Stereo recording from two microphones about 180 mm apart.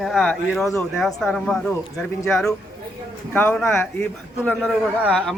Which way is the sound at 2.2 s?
15° left (ahead or behind).